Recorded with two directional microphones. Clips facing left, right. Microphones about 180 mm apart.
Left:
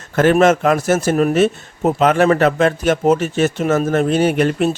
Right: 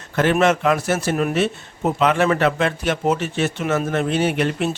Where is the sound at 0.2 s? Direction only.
45° left (ahead or behind).